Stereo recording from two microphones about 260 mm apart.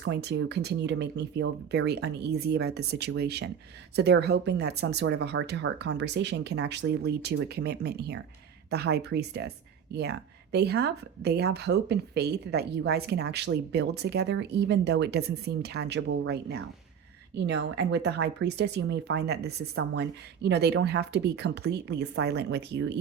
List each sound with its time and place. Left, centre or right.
0.0 s speech: right